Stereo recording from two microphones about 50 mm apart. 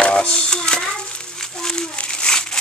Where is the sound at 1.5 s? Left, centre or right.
Centre.